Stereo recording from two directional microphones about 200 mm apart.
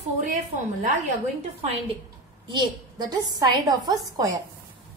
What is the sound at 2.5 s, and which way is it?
A woman's voice, 20° right (ahead or behind).